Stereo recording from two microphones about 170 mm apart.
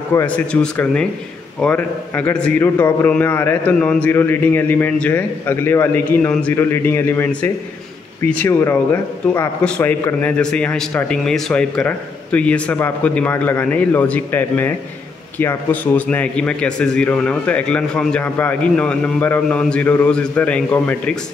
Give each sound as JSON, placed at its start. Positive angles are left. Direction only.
{"t": 0.1, "sound": "a man's voice", "side_deg": 15}